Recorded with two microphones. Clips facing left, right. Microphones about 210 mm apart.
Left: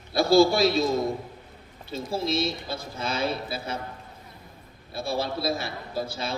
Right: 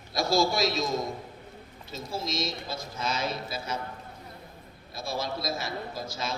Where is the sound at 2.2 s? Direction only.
30° left (ahead or behind).